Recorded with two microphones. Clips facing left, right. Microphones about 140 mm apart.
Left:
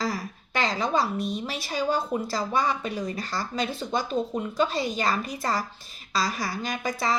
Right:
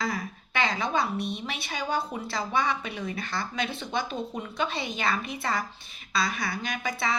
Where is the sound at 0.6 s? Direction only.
40° left (ahead or behind).